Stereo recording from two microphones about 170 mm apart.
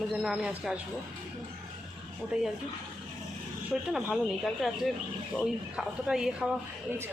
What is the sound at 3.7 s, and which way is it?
Speech, 5° right (ahead or behind).